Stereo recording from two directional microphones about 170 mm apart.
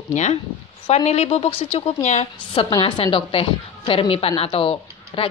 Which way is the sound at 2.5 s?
30° left (ahead or behind).